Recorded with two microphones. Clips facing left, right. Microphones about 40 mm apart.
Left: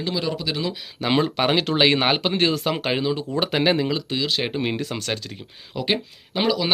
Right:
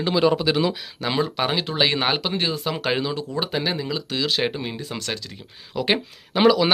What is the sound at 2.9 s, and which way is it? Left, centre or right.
Speech, centre.